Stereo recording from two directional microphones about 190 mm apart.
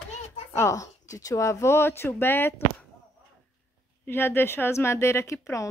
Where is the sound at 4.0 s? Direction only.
10° left (ahead or behind).